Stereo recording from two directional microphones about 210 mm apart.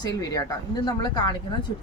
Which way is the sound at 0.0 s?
20° left (ahead or behind).